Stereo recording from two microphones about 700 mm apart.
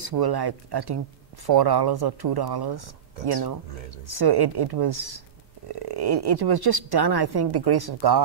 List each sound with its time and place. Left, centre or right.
0.0 s speech: right